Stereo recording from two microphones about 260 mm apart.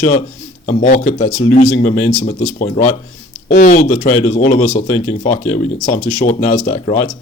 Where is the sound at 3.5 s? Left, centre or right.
Left.